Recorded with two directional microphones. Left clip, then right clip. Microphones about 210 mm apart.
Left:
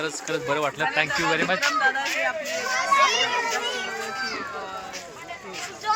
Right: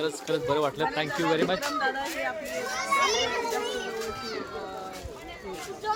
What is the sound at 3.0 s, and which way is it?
Speech, 45° right (ahead or behind).